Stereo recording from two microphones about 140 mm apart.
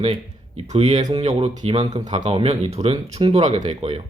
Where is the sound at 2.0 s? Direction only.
60° right (ahead or behind).